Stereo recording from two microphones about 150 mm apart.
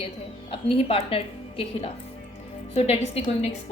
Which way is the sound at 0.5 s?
40° left (ahead or behind).